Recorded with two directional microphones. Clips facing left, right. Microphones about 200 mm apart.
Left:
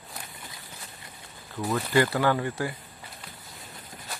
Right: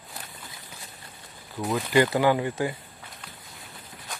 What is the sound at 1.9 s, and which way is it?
Speech, 20° right (ahead or behind).